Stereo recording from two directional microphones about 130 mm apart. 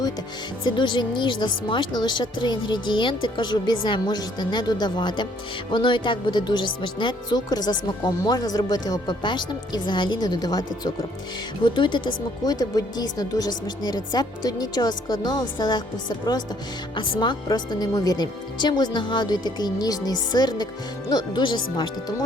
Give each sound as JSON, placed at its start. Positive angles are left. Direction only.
{"t": 0.6, "sound": "speech", "side_deg": 35}